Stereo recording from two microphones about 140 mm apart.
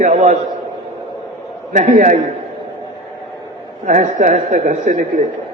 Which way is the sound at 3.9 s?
70° right (ahead or behind).